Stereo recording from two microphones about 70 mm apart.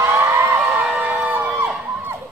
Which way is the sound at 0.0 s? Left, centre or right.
Right.